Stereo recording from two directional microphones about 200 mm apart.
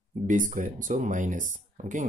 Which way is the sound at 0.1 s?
40° right (ahead or behind).